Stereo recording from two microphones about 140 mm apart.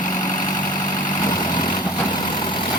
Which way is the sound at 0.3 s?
30° left (ahead or behind).